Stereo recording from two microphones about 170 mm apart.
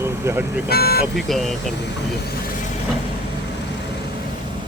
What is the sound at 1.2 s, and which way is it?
Speech, centre (ahead or behind).